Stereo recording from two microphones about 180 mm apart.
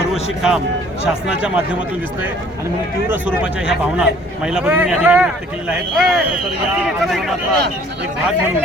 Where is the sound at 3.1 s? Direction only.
5° right (ahead or behind).